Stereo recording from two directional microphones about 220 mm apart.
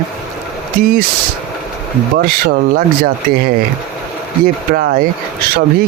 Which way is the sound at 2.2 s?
40° right (ahead or behind).